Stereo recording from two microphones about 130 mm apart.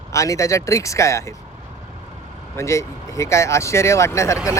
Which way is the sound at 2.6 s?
20° left (ahead or behind).